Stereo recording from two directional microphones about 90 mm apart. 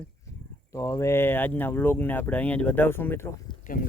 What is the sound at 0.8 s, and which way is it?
Speech, 35° left (ahead or behind).